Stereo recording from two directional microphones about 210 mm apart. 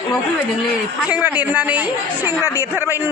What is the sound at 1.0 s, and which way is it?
A woman's voice, 5° right (ahead or behind).